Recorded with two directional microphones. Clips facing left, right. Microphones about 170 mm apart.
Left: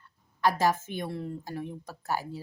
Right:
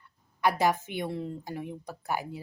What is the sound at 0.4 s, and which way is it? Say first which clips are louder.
Speech: even; 15° right (ahead or behind).